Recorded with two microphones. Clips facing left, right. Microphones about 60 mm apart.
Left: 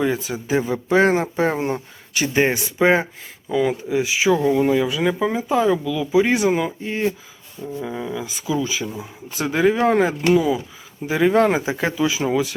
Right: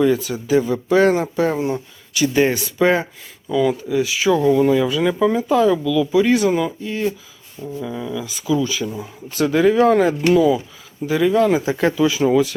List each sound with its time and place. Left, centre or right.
0.0 s speech: left
2.4 s speech: left
6.8 s speech: left
8.5 s speech: centre
11.0 s speech: left